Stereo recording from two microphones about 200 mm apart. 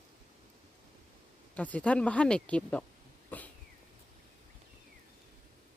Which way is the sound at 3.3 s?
10° left (ahead or behind).